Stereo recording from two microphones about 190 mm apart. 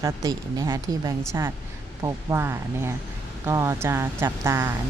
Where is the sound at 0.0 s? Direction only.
20° right (ahead or behind).